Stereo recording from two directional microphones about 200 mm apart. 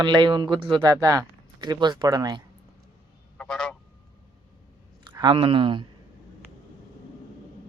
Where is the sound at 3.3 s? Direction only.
5° left (ahead or behind).